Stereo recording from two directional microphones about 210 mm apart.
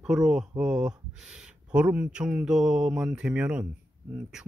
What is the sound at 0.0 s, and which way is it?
Speech, centre (ahead or behind).